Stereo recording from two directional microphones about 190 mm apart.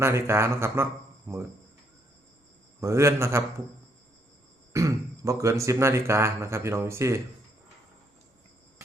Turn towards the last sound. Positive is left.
turn(degrees=-15)  # may be behind; listen again after turning